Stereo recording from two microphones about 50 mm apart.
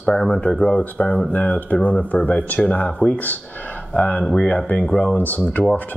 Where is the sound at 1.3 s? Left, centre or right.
Left.